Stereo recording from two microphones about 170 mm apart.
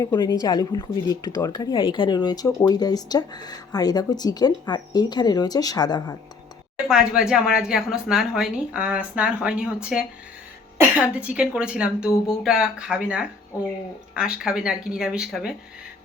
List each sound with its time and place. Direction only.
0.0 s speech: 25° left (ahead or behind)
6.8 s speech: 5° right (ahead or behind)